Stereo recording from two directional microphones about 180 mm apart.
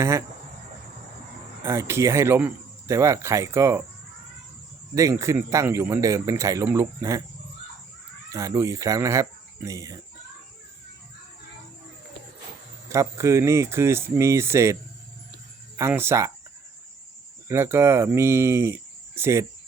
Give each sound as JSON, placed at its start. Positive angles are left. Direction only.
{"t": 0.0, "sound": "speech", "side_deg": -15}
{"t": 1.6, "sound": "speech", "side_deg": -15}
{"t": 4.9, "sound": "speech", "side_deg": -15}
{"t": 8.3, "sound": "speech", "side_deg": -20}
{"t": 12.9, "sound": "speech", "side_deg": -15}
{"t": 15.8, "sound": "speech", "side_deg": -15}
{"t": 17.5, "sound": "speech", "side_deg": -15}